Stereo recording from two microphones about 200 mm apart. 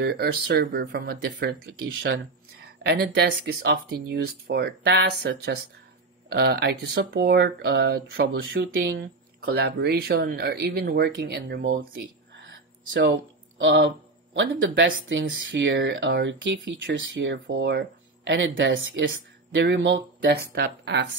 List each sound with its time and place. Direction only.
0.0 s speech: 55° right (ahead or behind)
2.9 s speech: 55° right (ahead or behind)